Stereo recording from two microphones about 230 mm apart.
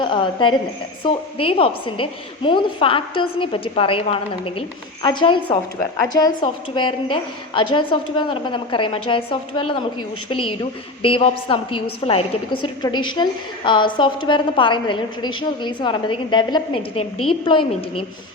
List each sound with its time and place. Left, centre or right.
0.0 s a woman's voice: left